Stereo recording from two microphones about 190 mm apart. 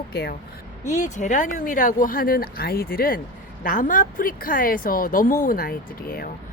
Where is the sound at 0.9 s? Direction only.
40° left (ahead or behind).